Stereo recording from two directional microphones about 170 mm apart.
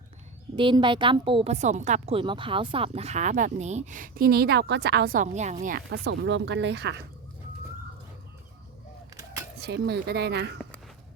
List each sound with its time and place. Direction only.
0.5 s a woman's voice: 30° right (ahead or behind); by 5.8 s 50° right (ahead or behind)
5.9 s speech: 90° right
9.6 s speech: 70° right (ahead or behind)